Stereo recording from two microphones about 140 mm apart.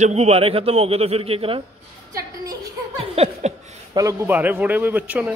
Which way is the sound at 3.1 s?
45° right (ahead or behind).